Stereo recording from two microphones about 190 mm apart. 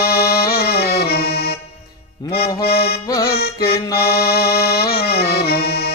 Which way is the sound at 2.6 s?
55° left (ahead or behind).